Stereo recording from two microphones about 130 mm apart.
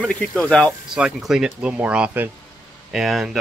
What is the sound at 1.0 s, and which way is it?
Speech, 5° right (ahead or behind).